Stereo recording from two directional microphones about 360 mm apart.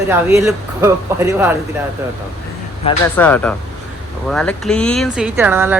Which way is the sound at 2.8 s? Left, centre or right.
Centre.